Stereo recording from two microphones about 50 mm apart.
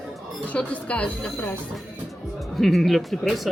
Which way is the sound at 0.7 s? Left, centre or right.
Left.